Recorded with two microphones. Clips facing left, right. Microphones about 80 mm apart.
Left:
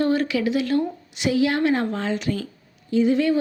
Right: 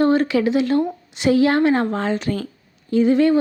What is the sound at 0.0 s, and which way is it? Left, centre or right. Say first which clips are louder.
A woman's voice: right 5 dB; right.